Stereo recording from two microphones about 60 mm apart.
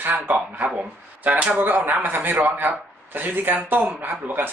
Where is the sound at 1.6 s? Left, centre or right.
Right.